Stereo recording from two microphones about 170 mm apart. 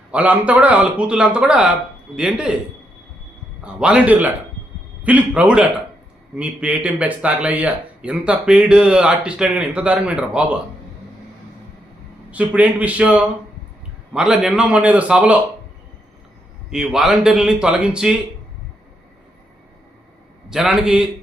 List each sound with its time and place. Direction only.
0.1 s a man's voice: 10° right (ahead or behind)
3.6 s a man's voice: 5° right (ahead or behind)
12.3 s a man's voice: 10° right (ahead or behind)
16.6 s a man's voice: 5° right (ahead or behind)
20.5 s a man's voice: 5° right (ahead or behind)